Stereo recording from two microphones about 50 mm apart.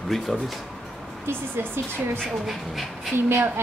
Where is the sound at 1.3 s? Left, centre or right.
Right.